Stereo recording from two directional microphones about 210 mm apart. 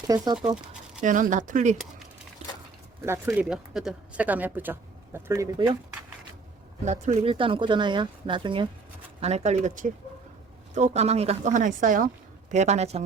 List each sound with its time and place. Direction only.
0.1 s speech: 20° right (ahead or behind)
1.0 s a woman's voice: 40° right (ahead or behind)
3.1 s speech: 10° right (ahead or behind)
6.8 s a woman's voice: 35° right (ahead or behind)